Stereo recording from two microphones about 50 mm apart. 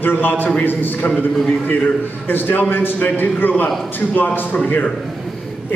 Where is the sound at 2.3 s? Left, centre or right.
Left.